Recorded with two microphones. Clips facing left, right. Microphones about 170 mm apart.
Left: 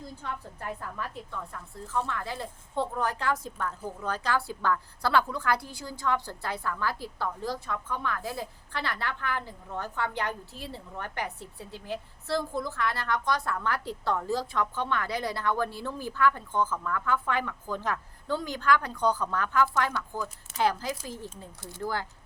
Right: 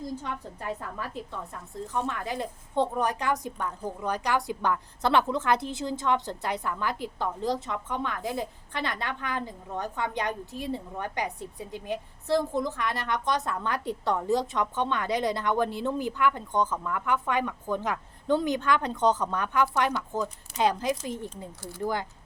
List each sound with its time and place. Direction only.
0.0 s a woman's voice: 15° right (ahead or behind)